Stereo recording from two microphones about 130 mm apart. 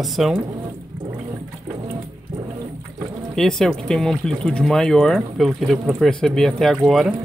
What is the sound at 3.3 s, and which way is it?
Speech, 5° left (ahead or behind).